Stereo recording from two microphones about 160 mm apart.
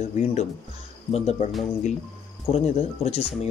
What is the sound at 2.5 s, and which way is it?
Speech, 40° left (ahead or behind).